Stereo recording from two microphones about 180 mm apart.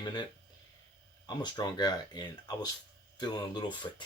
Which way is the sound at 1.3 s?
25° left (ahead or behind).